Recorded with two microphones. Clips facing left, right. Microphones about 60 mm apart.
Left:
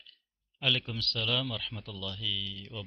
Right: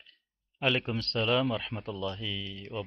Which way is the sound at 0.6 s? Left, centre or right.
Right.